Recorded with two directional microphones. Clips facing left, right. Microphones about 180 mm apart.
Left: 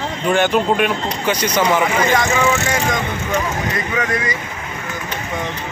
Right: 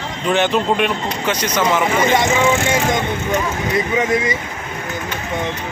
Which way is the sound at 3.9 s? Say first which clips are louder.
Right 3 dB; 20° right (ahead or behind).